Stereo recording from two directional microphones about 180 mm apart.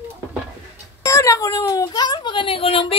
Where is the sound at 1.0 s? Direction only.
15° left (ahead or behind).